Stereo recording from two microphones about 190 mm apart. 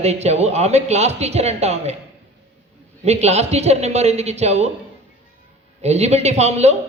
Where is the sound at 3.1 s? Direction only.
35° right (ahead or behind).